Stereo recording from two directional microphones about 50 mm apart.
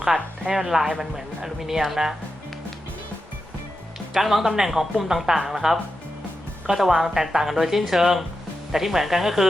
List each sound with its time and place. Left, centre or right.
0.0 s speech: centre
4.1 s speech: centre